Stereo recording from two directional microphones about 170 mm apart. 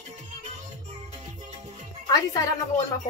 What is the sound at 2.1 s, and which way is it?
Music, 20° left (ahead or behind).